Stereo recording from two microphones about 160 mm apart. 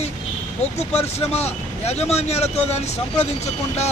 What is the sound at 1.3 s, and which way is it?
Speech, 40° left (ahead or behind).